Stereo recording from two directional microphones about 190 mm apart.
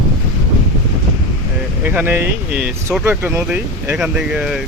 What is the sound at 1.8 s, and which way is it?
Speech, 10° right (ahead or behind).